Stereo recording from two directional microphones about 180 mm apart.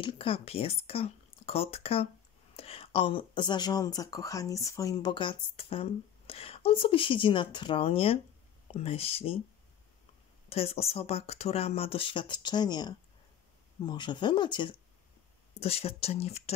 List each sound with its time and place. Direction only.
0.0 s speech: 30° left (ahead or behind)
10.5 s speech: 35° left (ahead or behind)